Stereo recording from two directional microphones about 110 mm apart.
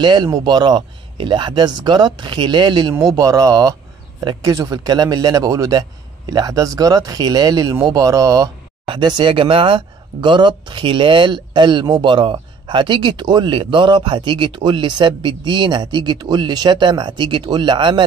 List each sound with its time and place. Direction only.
0.0 s speech: 45° right (ahead or behind)
3.2 s a man's voice: 30° right (ahead or behind)
8.8 s speech: 45° right (ahead or behind)